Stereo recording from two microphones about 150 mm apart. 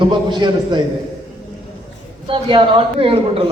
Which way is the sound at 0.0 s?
30° right (ahead or behind).